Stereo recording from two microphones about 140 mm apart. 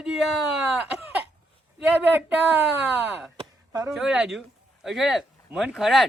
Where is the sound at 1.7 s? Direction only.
10° right (ahead or behind).